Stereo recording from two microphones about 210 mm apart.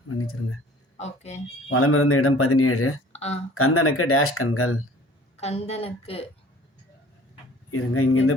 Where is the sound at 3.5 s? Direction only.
90° left.